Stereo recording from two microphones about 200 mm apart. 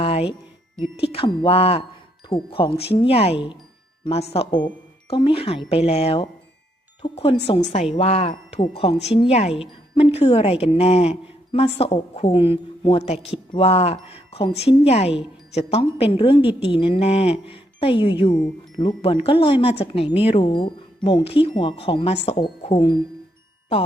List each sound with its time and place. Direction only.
0.0 s music: 30° left (ahead or behind)
0.9 s speech: 30° left (ahead or behind)